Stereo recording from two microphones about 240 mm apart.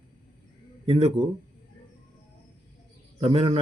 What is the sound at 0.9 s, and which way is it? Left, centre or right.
Speech, right.